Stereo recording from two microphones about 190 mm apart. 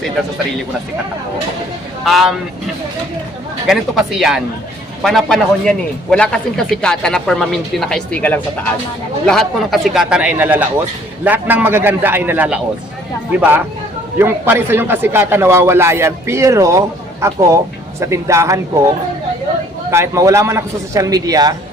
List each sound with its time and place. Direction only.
2.0 s speech: centre (ahead or behind)
3.7 s a man's voice: centre (ahead or behind)
14.2 s a man's voice: 10° right (ahead or behind)
19.9 s a man's voice: 15° right (ahead or behind)